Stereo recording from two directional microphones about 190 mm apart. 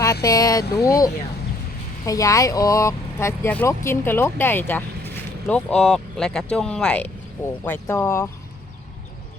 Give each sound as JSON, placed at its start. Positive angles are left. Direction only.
{"t": 0.0, "sound": "speech", "side_deg": 15}